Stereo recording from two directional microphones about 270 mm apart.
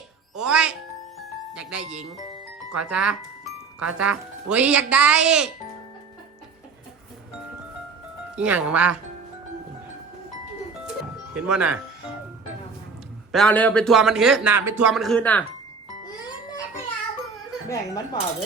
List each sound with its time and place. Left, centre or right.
0.3 s music: centre
1.5 s speech: centre
8.4 s speech: centre
11.3 s speech: centre
13.3 s speech: centre
17.7 s speech: centre